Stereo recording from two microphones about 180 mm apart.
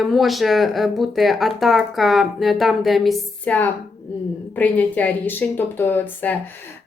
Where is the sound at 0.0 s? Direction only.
Centre (ahead or behind).